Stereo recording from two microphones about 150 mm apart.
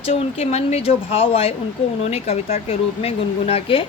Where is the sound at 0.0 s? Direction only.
45° left (ahead or behind).